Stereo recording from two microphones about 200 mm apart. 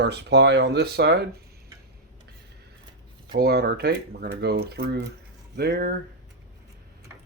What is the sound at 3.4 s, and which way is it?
Speech, 55° right (ahead or behind).